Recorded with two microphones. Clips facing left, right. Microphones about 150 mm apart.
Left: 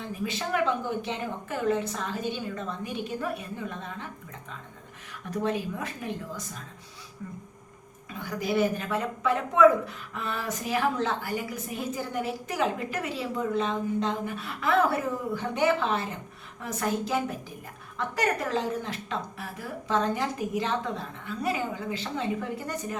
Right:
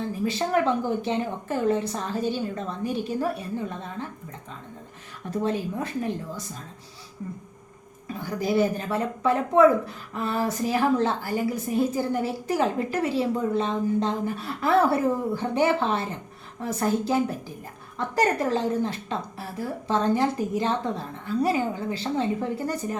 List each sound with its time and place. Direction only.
0.0 s a woman's voice: 35° right (ahead or behind)
5.3 s a woman's voice: 30° right (ahead or behind)
8.0 s a woman's voice: 35° right (ahead or behind)